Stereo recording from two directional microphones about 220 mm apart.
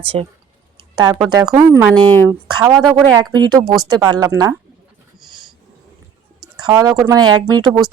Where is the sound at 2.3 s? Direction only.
15° right (ahead or behind).